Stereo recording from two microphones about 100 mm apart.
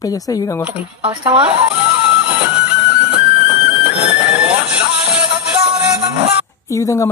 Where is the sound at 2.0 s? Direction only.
10° right (ahead or behind).